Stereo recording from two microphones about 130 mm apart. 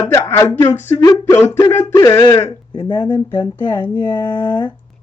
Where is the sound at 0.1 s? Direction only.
20° left (ahead or behind).